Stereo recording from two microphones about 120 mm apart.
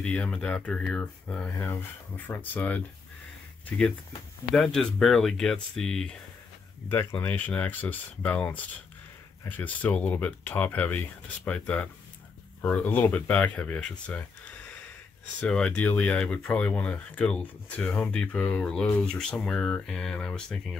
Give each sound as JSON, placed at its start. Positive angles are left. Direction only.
{"t": 0.0, "sound": "speech", "side_deg": 5}
{"t": 1.5, "sound": "speech", "side_deg": 20}
{"t": 6.9, "sound": "speech", "side_deg": 15}
{"t": 15.4, "sound": "speech", "side_deg": 5}